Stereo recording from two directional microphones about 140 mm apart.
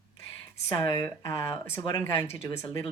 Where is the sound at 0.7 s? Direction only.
20° left (ahead or behind).